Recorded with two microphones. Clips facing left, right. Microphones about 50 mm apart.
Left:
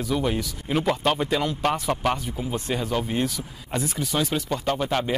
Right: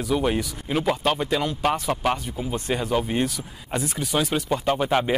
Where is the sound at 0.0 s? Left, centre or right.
Centre.